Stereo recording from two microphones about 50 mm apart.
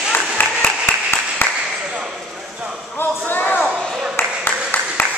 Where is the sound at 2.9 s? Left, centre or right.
Left.